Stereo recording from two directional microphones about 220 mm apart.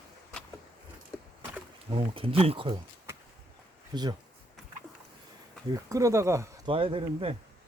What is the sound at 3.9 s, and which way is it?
Speech, 20° right (ahead or behind).